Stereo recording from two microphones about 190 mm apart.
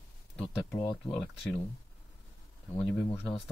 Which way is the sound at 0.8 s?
25° left (ahead or behind).